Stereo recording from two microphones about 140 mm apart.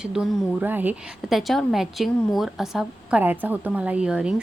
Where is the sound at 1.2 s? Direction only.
Centre (ahead or behind).